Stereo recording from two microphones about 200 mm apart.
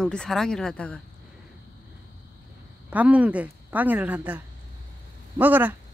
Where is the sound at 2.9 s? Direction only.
5° right (ahead or behind).